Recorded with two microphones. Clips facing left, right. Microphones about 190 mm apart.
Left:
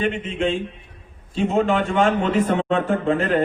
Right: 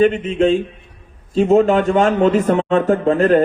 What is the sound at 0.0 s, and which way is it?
A man's voice, 45° right (ahead or behind).